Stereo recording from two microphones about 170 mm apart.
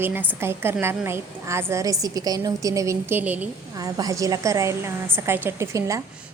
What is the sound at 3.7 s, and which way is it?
A woman's voice, 20° right (ahead or behind).